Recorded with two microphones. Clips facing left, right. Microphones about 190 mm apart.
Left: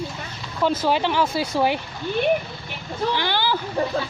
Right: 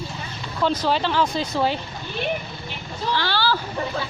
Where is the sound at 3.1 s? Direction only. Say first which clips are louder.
Right 2 dB; 15° left (ahead or behind).